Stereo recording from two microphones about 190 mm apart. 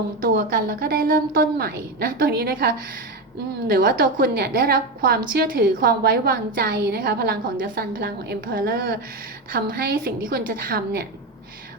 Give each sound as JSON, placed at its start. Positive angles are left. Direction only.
{"t": 0.2, "sound": "a woman's voice", "side_deg": -50}